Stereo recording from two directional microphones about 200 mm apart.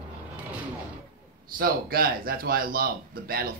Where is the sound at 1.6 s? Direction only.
45° right (ahead or behind).